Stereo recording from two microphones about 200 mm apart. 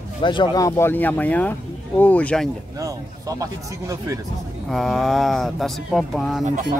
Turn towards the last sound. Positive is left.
turn(degrees=0)  # may be behind; listen again after turning